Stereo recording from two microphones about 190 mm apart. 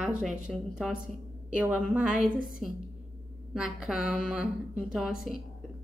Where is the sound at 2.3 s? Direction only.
45° right (ahead or behind).